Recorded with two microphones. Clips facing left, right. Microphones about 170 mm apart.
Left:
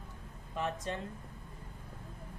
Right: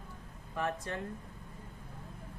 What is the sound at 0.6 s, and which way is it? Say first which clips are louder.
Speech: even; 20° left (ahead or behind).